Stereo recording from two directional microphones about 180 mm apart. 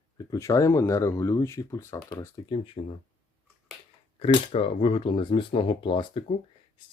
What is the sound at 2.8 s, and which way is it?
Speech, 40° left (ahead or behind).